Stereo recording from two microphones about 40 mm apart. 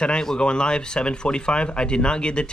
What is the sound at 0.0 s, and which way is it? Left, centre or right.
Speech, left.